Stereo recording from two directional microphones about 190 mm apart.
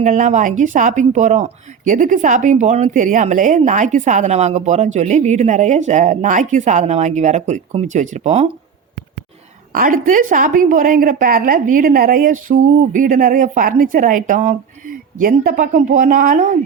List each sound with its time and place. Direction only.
0.0 s speech: 40° right (ahead or behind)
9.7 s a woman's voice: 45° right (ahead or behind)